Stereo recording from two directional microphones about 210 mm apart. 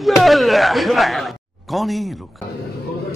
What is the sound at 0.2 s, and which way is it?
Speech, centre (ahead or behind).